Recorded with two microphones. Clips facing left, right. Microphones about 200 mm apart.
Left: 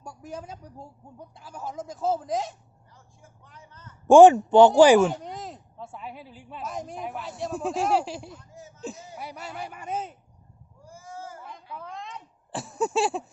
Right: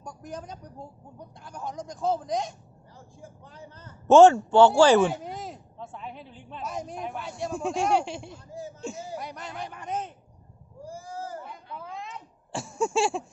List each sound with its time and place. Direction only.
0.0 s a woman's voice: 5° left (ahead or behind)
3.2 s speech: 30° right (ahead or behind)
4.1 s speech: 15° left (ahead or behind)
5.0 s speech: 5° right (ahead or behind)
8.4 s a sound: 30° right (ahead or behind)
8.8 s speech: centre (ahead or behind)
10.8 s sheep: 35° right (ahead or behind)
11.4 s a sound: 5° right (ahead or behind)